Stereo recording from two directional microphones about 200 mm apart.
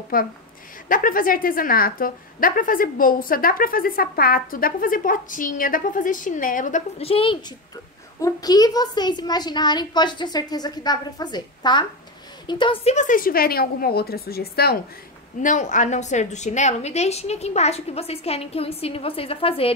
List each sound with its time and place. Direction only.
0.1 s a woman's voice: 45° left (ahead or behind)
15.4 s a woman's voice: 40° left (ahead or behind)